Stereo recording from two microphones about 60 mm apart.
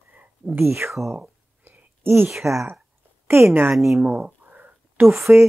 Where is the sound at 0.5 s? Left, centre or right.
Right.